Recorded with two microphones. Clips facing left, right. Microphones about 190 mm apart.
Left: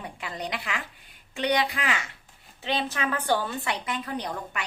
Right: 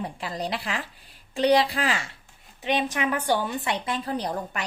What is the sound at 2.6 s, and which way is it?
A woman's voice, 15° right (ahead or behind).